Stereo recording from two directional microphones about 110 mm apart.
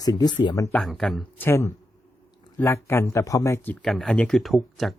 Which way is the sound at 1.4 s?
25° left (ahead or behind).